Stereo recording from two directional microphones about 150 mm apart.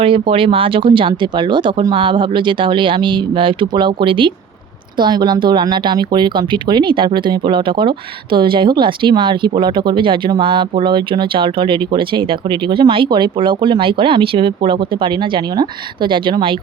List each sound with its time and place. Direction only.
0.0 s speech: 35° right (ahead or behind)